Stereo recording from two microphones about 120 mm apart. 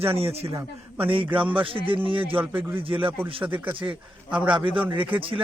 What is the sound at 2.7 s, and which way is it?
Speech, 50° right (ahead or behind).